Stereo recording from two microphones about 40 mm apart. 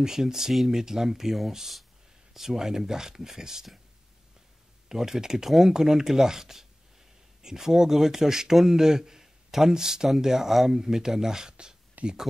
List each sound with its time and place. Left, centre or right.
0.0 s speech: centre
4.8 s speech: centre
12.0 s a sound: right